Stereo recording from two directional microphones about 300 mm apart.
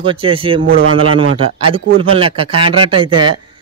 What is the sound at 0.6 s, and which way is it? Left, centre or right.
Speech, right.